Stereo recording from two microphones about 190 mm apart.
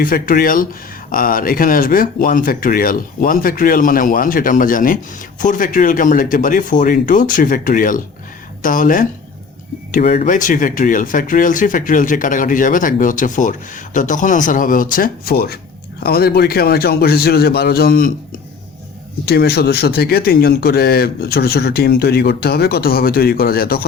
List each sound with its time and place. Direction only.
0.0 s speech: 45° left (ahead or behind)
19.2 s speech: 55° left (ahead or behind)